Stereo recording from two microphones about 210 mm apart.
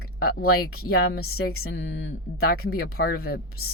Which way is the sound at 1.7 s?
65° left (ahead or behind).